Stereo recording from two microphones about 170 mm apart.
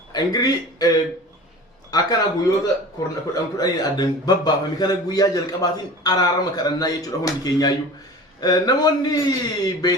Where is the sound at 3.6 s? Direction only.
25° left (ahead or behind).